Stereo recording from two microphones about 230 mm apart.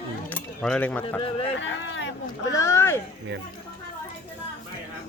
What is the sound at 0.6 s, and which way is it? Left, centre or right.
Speech, centre.